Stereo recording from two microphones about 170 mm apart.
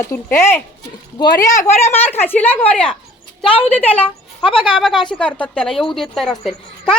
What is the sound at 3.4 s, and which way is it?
Speech, 35° left (ahead or behind).